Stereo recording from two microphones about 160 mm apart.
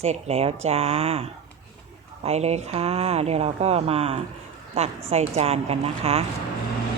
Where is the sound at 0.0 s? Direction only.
40° right (ahead or behind).